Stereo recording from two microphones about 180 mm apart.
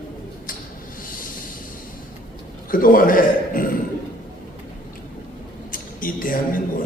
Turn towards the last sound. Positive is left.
turn(degrees=50)  # may be behind; listen again after turning